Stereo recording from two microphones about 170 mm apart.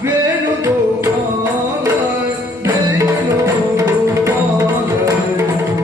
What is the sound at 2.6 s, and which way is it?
Music, 15° right (ahead or behind).